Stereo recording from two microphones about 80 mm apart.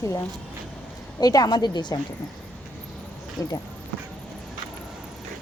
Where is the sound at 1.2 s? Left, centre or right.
Left.